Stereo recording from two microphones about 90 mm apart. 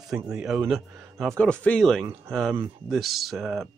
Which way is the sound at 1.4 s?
15° left (ahead or behind).